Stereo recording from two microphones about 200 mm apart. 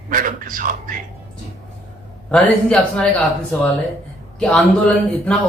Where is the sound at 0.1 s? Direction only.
45° right (ahead or behind).